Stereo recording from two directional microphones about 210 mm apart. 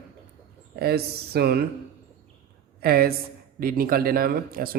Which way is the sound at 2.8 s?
45° right (ahead or behind).